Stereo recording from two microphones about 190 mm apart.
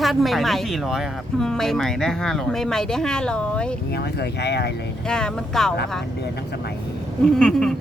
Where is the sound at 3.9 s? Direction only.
60° left (ahead or behind).